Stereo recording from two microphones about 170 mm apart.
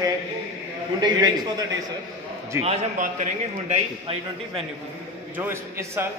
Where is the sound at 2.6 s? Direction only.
45° right (ahead or behind).